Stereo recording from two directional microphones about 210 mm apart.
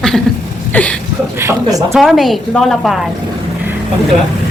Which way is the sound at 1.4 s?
10° right (ahead or behind).